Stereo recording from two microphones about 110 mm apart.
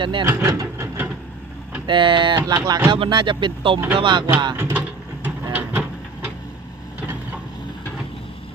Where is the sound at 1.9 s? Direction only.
50° right (ahead or behind).